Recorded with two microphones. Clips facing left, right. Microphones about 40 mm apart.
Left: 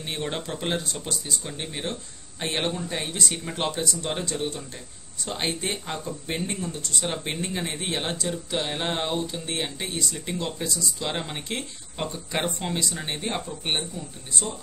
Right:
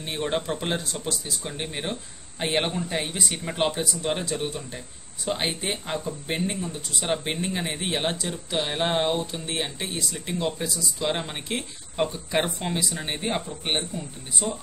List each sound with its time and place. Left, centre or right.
0.0 s speech: centre
1.4 s speech: centre
5.4 s speech: centre